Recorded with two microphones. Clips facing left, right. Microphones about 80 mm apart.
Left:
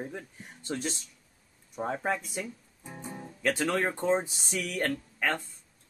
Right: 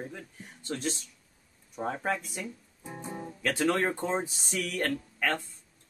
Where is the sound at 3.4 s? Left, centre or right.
Centre.